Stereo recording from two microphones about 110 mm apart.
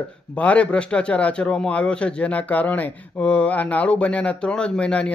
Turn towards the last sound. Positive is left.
turn(degrees=10)  # may be behind; listen again after turning